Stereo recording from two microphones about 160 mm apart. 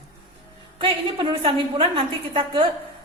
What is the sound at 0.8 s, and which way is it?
A woman's voice, 30° right (ahead or behind).